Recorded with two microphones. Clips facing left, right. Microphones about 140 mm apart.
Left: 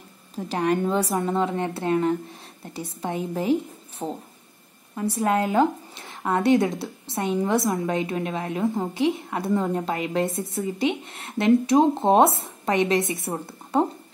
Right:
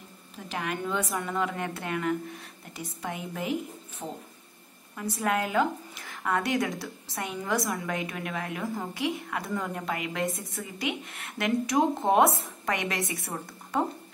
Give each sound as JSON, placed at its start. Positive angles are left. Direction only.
{"t": 0.5, "sound": "a woman's voice", "side_deg": 35}